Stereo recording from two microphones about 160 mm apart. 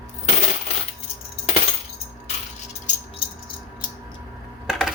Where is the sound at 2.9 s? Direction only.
50° left (ahead or behind).